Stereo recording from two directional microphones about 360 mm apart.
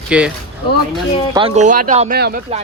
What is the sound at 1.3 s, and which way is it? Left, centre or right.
Speech, centre.